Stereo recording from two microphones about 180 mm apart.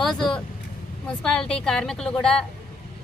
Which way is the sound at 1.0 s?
5° left (ahead or behind).